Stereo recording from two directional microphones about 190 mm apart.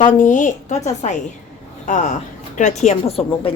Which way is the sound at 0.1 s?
40° left (ahead or behind).